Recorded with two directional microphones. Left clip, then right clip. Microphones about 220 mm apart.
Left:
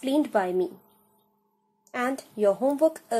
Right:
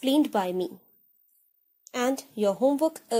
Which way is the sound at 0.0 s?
30° right (ahead or behind).